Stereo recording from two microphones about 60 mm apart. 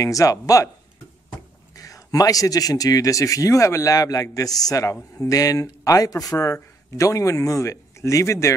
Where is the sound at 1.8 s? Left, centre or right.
Left.